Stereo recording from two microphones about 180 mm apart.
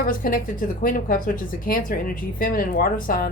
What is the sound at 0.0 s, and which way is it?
A woman's voice, 50° left (ahead or behind).